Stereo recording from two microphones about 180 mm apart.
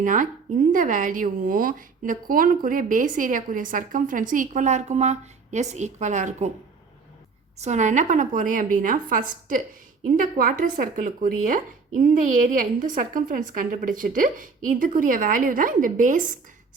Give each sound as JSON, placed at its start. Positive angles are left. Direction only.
{"t": 0.0, "sound": "speech", "side_deg": -45}
{"t": 7.6, "sound": "speech", "side_deg": -40}